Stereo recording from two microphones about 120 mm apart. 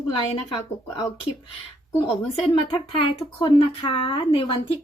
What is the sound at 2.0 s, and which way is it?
A woman's voice, 55° left (ahead or behind).